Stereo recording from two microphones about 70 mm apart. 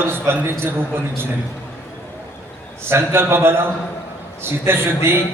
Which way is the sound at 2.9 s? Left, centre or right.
Right.